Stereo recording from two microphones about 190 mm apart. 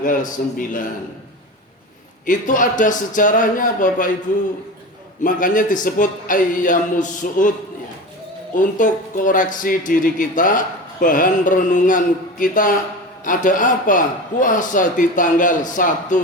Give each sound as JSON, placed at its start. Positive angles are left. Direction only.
{"t": 0.0, "sound": "a man's voice", "side_deg": 45}
{"t": 2.2, "sound": "a man's voice", "side_deg": 45}
{"t": 5.2, "sound": "a man's voice", "side_deg": 45}
{"t": 8.5, "sound": "a man's voice", "side_deg": 45}